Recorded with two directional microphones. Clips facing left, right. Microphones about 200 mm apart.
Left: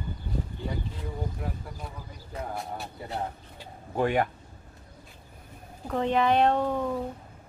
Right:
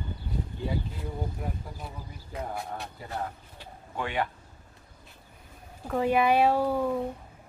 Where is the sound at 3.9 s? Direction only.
45° left (ahead or behind).